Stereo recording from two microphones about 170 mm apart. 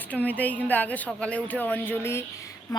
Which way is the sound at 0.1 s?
10° left (ahead or behind).